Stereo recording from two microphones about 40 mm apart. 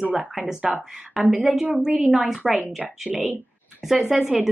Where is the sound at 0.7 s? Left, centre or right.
Centre.